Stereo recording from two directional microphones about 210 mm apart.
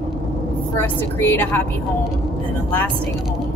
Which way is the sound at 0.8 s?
10° left (ahead or behind).